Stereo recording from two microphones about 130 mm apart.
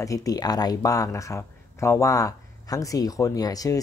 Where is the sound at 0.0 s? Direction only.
25° left (ahead or behind).